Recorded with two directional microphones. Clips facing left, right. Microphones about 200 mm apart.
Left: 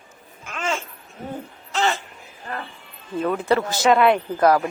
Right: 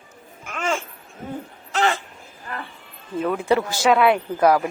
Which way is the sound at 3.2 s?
10° right (ahead or behind).